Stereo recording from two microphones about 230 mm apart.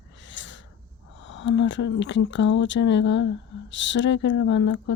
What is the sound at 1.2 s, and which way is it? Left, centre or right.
Speech, left.